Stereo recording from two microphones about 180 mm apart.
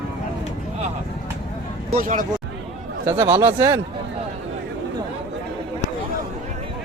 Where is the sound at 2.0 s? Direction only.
45° right (ahead or behind).